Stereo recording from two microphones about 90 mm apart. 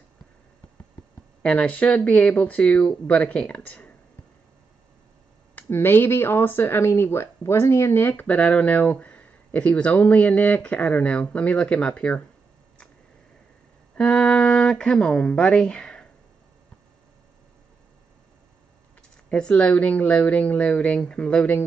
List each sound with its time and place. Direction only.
1.4 s speech: 10° left (ahead or behind)
5.6 s speech: 25° left (ahead or behind)
13.9 s speech: 15° left (ahead or behind)
19.2 s speech: 10° left (ahead or behind)